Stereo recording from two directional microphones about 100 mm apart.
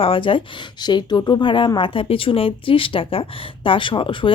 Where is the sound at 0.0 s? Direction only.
65° left (ahead or behind).